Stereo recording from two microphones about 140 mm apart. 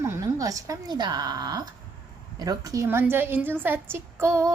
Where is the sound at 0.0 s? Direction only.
20° right (ahead or behind).